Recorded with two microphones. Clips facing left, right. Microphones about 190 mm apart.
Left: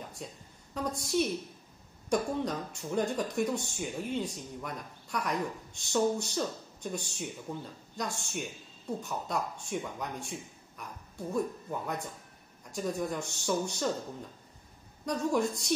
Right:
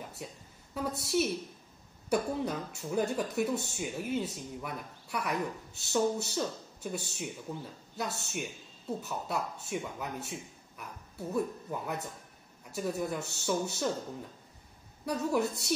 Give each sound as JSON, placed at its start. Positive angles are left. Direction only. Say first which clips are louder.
{"t": 0.7, "sound": "speech", "louder": "even", "side_deg": -5}
{"t": 15.0, "sound": "speech", "louder": "left 1 dB", "side_deg": -5}